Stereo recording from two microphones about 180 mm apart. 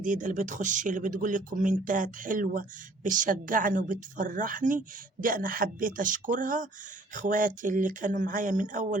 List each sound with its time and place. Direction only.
0.0 s speech: 45° right (ahead or behind)